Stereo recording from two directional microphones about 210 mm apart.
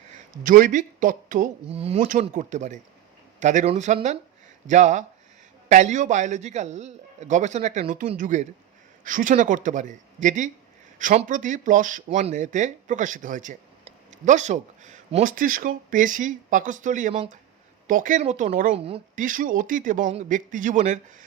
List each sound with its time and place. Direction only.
0.4 s speech: 40° right (ahead or behind)
2.0 s speech: 40° right (ahead or behind)
18.7 s speech: 25° right (ahead or behind)